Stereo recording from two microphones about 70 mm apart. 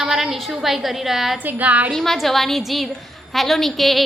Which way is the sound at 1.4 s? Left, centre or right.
Right.